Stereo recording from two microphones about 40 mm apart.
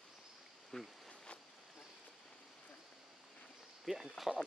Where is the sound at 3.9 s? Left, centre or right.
Centre.